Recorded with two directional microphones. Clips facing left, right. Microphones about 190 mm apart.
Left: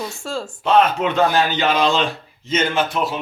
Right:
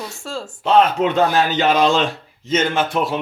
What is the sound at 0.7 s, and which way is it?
Speech, 40° right (ahead or behind).